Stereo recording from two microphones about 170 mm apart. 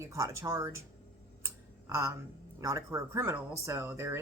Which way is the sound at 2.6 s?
20° right (ahead or behind).